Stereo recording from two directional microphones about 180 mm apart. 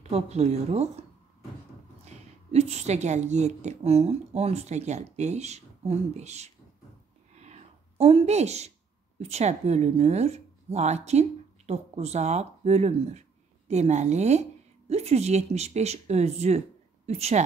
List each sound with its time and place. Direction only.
0.0 s a woman's voice: 35° right (ahead or behind)
2.0 s a woman's voice: 35° right (ahead or behind)
7.3 s a sound: 40° right (ahead or behind)
9.2 s a woman's voice: 40° right (ahead or behind)